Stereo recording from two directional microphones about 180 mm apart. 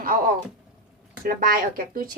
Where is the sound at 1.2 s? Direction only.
55° right (ahead or behind).